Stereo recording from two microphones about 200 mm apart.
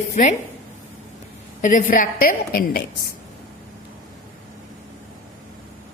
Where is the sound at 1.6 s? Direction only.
40° left (ahead or behind).